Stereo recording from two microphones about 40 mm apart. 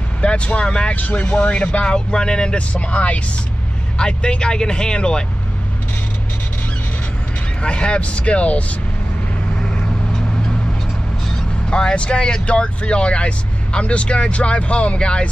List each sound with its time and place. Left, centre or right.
0.2 s speech: left
0.9 s speech: left
2.7 s speech: left
4.0 s speech: left
7.6 s speech: left
11.7 s speech: left